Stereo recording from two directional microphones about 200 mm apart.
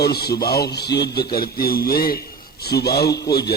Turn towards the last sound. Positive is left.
turn(degrees=55)  # may be behind; listen again after turning